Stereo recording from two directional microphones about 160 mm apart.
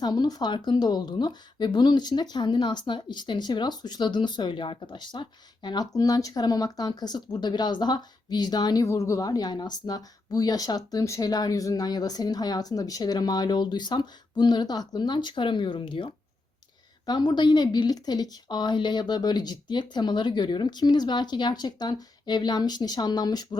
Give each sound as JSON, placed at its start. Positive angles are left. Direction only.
{"t": 0.0, "sound": "speech", "side_deg": 25}